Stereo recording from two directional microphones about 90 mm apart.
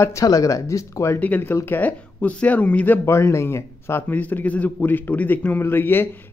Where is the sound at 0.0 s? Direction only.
40° left (ahead or behind).